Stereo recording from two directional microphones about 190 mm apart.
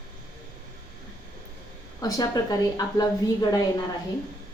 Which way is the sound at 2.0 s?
20° left (ahead or behind).